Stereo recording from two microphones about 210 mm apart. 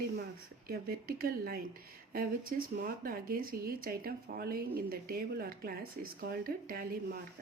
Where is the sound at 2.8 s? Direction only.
45° right (ahead or behind).